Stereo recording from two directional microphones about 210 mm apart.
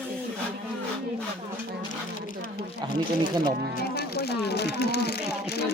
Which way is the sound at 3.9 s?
50° left (ahead or behind).